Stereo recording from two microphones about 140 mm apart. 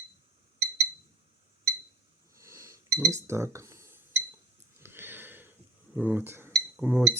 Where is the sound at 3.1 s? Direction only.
20° right (ahead or behind).